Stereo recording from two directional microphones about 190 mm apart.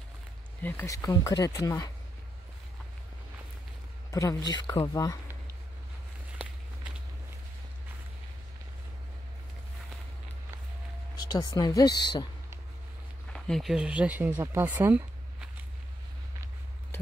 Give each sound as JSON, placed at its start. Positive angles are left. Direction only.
{"t": 0.6, "sound": "speech", "side_deg": 10}
{"t": 4.1, "sound": "speech", "side_deg": 15}
{"t": 11.1, "sound": "speech", "side_deg": 20}
{"t": 13.3, "sound": "speech", "side_deg": 0}
{"t": 16.9, "sound": "a sound", "side_deg": 15}